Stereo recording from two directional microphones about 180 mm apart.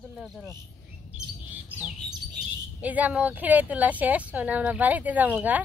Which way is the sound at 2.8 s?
10° right (ahead or behind).